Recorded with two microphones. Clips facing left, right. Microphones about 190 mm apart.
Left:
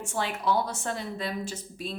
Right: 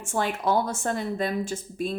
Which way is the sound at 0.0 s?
50° right (ahead or behind).